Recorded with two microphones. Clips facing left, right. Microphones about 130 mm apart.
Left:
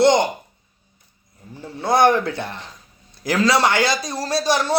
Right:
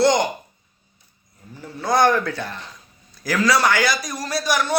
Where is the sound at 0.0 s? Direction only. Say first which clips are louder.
Left 2 dB; 25° left (ahead or behind).